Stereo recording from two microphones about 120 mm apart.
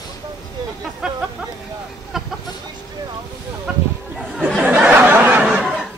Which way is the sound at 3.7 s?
5° right (ahead or behind).